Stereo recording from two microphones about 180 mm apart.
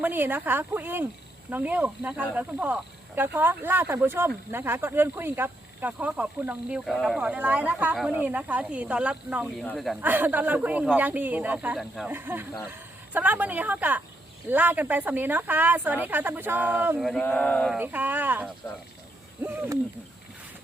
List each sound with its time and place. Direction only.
0.0 s speech: 10° right (ahead or behind)
10.0 s speech: 10° right (ahead or behind)
17.0 s speech: 5° left (ahead or behind)
17.7 s speech: 10° right (ahead or behind)